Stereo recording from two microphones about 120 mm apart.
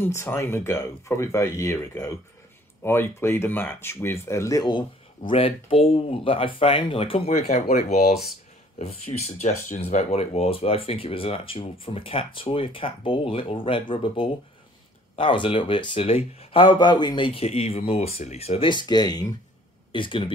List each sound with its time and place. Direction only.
0.0 s speech: 20° left (ahead or behind)
5.3 s speech: 50° left (ahead or behind); by 8.2 s 70° left (ahead or behind)
9.1 s speech: 45° left (ahead or behind)
9.4 s speech: 70° left (ahead or behind)
18.7 s speech: 40° left (ahead or behind)
19.9 s speech: 45° left (ahead or behind)